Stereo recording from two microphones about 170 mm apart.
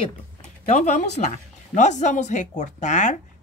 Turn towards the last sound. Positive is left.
turn(degrees=45)  # may be behind; listen again after turning